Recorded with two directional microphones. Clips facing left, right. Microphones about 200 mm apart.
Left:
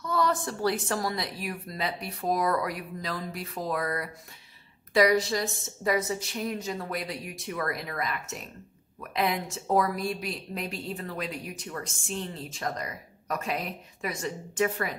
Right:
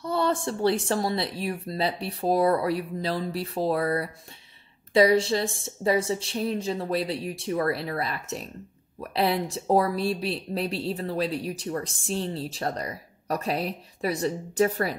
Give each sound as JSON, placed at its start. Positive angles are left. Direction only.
{"t": 0.0, "sound": "speech", "side_deg": -30}